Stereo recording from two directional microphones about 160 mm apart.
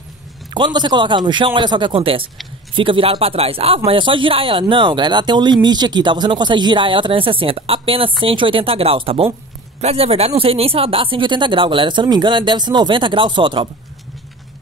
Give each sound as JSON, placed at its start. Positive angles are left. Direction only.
{"t": 0.6, "sound": "speech", "side_deg": -30}